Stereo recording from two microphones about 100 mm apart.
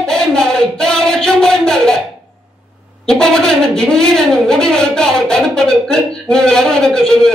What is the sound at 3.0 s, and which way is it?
A woman's voice, 5° left (ahead or behind).